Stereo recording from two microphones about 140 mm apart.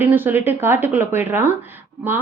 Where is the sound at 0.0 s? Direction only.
15° right (ahead or behind).